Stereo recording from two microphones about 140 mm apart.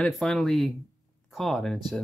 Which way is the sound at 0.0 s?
5° left (ahead or behind).